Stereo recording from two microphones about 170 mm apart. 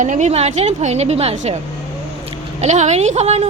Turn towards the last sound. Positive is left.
turn(degrees=-40)  # may be behind; listen again after turning